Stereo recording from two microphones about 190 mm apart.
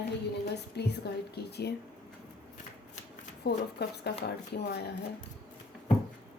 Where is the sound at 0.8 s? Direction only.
60° left (ahead or behind).